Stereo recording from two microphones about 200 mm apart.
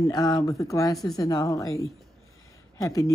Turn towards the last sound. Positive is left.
turn(degrees=15)  # may be behind; listen again after turning